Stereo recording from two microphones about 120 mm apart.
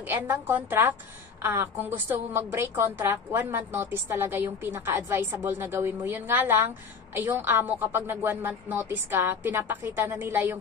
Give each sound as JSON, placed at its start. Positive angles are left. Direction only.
{"t": 0.0, "sound": "a woman's voice", "side_deg": -20}